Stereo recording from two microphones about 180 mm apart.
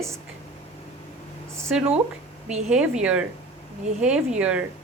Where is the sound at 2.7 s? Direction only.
5° right (ahead or behind).